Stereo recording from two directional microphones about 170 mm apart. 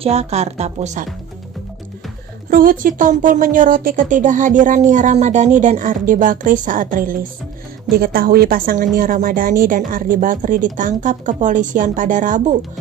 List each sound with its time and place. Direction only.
0.0 s a woman's voice: 40° right (ahead or behind)
2.5 s a woman's voice: 55° right (ahead or behind)